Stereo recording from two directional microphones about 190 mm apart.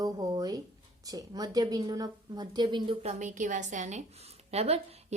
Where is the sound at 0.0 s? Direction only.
20° right (ahead or behind).